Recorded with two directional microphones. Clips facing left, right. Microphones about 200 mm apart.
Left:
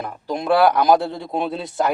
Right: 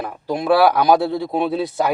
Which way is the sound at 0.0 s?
5° right (ahead or behind).